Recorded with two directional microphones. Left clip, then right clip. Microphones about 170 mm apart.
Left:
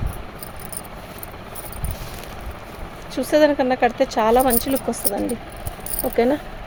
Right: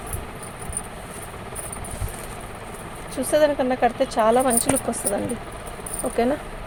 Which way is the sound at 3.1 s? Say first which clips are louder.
Left 3 dB; 45° left (ahead or behind).